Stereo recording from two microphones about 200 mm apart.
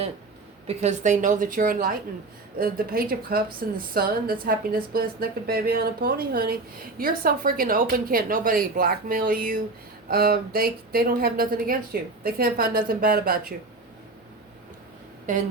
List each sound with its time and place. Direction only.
0.7 s a woman's voice: 35° right (ahead or behind)
15.3 s a woman's voice: 40° right (ahead or behind)